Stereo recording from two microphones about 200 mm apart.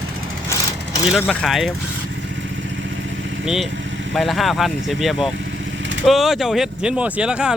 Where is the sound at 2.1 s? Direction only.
65° right (ahead or behind).